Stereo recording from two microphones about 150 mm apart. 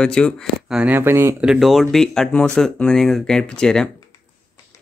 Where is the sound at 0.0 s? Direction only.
5° left (ahead or behind); by 1.5 s 15° right (ahead or behind).